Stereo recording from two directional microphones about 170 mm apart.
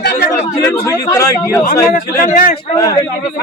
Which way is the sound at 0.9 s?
20° left (ahead or behind).